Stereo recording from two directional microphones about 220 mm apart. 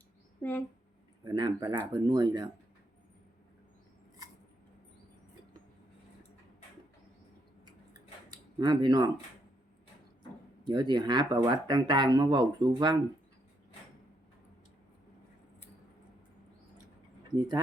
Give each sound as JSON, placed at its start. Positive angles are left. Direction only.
{"t": 0.4, "sound": "speech", "side_deg": 5}
{"t": 1.2, "sound": "speech", "side_deg": -20}
{"t": 8.3, "sound": "speech", "side_deg": -20}
{"t": 10.7, "sound": "speech", "side_deg": -20}